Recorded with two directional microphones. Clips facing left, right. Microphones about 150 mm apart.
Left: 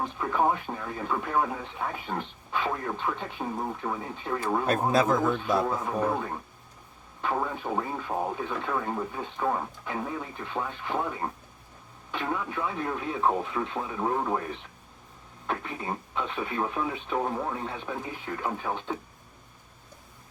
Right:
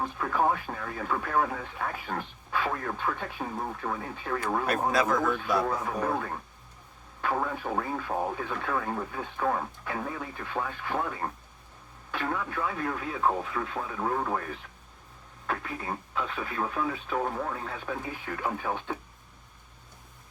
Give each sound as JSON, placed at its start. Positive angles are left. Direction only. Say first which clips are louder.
{"t": 0.2, "sound": "speech", "louder": "left 1 dB", "side_deg": 15}
{"t": 5.6, "sound": "speech", "louder": "left 2 dB", "side_deg": 5}
{"t": 7.9, "sound": "speech", "louder": "even", "side_deg": 10}
{"t": 15.4, "sound": "speech", "louder": "left 1 dB", "side_deg": 25}
{"t": 17.8, "sound": "speech", "louder": "even", "side_deg": 10}